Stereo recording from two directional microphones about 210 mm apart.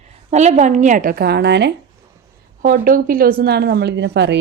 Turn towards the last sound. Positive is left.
turn(degrees=-55)  # may be behind; listen again after turning